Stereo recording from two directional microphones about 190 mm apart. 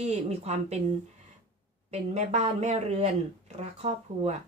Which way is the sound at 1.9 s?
35° right (ahead or behind).